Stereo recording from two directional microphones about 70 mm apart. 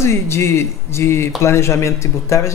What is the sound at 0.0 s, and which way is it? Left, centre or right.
Speech, left.